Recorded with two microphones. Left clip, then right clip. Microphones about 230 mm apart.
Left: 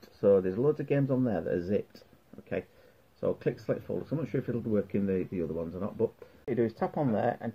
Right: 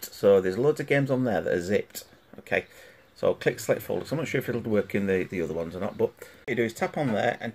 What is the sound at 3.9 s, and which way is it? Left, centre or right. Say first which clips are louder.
Speech: right 5 dB; centre.